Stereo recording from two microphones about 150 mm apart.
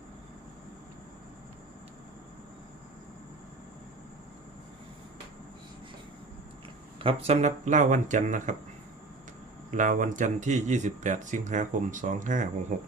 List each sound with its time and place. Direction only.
7.0 s speech: 40° right (ahead or behind); by 8.5 s 55° right (ahead or behind)
9.7 s speech: 60° right (ahead or behind)